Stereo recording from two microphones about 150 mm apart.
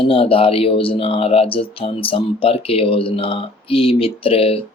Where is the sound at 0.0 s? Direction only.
40° left (ahead or behind).